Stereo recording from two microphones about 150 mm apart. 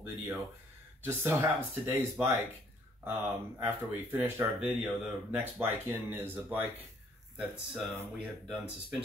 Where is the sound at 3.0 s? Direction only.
15° right (ahead or behind).